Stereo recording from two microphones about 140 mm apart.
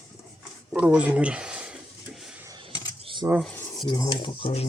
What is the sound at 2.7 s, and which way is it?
Camera, 30° left (ahead or behind).